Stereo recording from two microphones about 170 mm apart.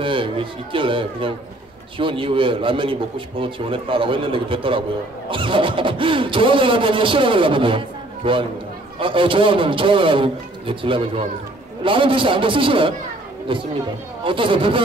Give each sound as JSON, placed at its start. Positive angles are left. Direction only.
{"t": 0.0, "sound": "speech", "side_deg": -30}